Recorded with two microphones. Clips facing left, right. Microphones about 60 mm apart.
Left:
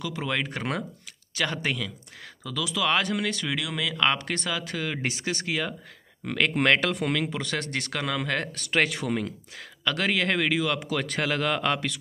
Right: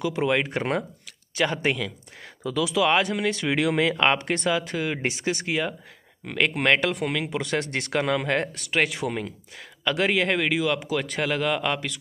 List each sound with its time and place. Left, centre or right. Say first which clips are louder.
0.0 s speech: right 6 dB; right
8.6 s speech: left 3 dB; centre